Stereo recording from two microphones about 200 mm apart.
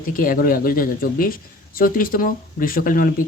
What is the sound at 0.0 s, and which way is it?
Speech, 45° left (ahead or behind).